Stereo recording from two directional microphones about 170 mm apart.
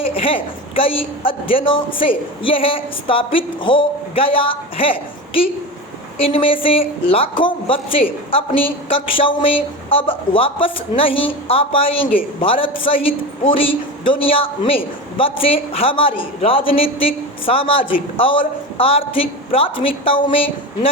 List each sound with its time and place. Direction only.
0.1 s a woman's voice: 35° left (ahead or behind)